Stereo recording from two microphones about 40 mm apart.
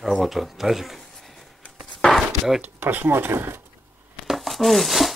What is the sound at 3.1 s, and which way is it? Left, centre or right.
Speech, right.